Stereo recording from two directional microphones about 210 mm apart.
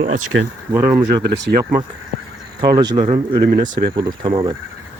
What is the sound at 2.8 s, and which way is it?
Speech, 20° right (ahead or behind).